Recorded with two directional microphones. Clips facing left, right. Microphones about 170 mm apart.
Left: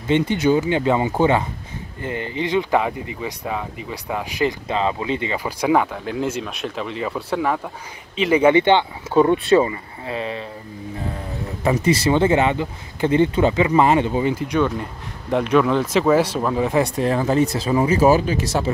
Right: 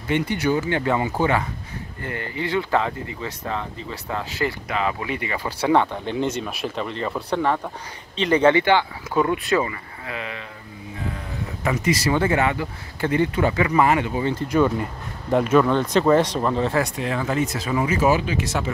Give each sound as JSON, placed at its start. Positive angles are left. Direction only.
{"t": 0.1, "sound": "speech", "side_deg": 20}
{"t": 5.4, "sound": "speech", "side_deg": 10}
{"t": 8.5, "sound": "speech", "side_deg": 25}
{"t": 11.6, "sound": "speech", "side_deg": 30}
{"t": 14.2, "sound": "speech", "side_deg": 10}
{"t": 14.5, "sound": "speech", "side_deg": 0}
{"t": 16.8, "sound": "speech", "side_deg": 35}